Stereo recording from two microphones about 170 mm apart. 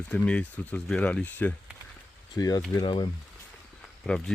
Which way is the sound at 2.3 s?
20° left (ahead or behind).